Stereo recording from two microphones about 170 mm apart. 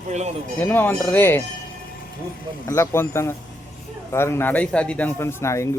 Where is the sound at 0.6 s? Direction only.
10° left (ahead or behind).